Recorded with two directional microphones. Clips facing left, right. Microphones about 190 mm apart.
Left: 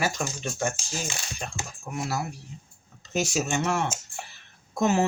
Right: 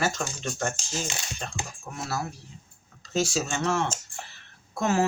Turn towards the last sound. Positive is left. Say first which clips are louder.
# left 2 dB
turn(degrees=20)  # may be behind; listen again after turning